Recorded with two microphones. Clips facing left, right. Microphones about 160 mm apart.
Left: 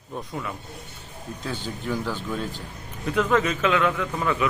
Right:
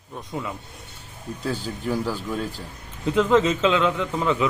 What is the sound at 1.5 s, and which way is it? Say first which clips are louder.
Speech: right 3 dB; 5° right (ahead or behind).